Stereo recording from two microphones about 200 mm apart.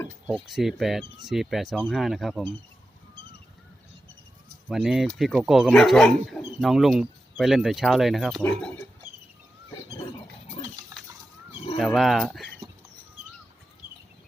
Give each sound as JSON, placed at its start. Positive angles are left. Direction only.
{"t": 0.3, "sound": "speech", "side_deg": 0}
{"t": 4.7, "sound": "speech", "side_deg": 0}
{"t": 9.7, "sound": "roaring cats", "side_deg": 25}
{"t": 11.5, "sound": "a sound", "side_deg": 25}
{"t": 11.8, "sound": "speech", "side_deg": 0}